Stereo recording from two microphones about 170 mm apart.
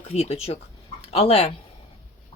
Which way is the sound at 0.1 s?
40° left (ahead or behind).